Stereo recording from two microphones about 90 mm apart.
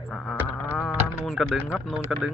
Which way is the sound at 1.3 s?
Centre (ahead or behind).